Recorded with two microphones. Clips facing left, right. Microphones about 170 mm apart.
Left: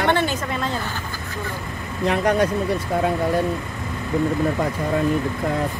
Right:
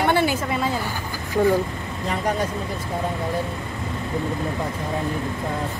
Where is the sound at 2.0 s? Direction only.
75° left (ahead or behind).